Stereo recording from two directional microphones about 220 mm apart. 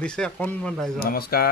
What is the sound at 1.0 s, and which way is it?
Speech, 45° left (ahead or behind).